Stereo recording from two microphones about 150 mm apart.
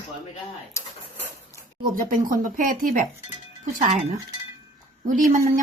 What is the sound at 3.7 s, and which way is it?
Speech, 55° right (ahead or behind).